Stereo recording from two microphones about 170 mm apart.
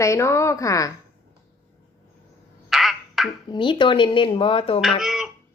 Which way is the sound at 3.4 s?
25° left (ahead or behind).